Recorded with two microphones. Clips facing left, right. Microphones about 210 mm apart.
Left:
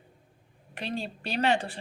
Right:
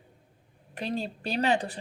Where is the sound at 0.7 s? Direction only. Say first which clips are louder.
Right 2 dB; 40° right (ahead or behind).